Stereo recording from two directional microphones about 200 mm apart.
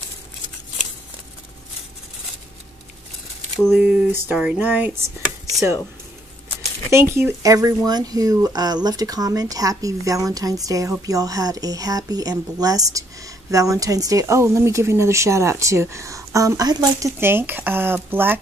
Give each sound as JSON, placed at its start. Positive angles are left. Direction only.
{"t": 3.7, "sound": "speech", "side_deg": -10}
{"t": 6.9, "sound": "speech", "side_deg": -15}